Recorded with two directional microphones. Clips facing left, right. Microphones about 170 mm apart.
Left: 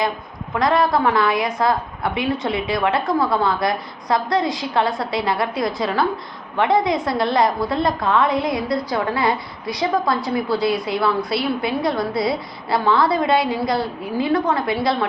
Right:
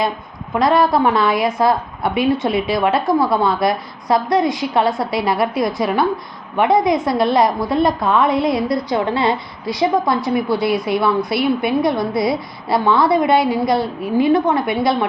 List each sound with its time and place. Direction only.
0.6 s a woman's voice: 25° right (ahead or behind)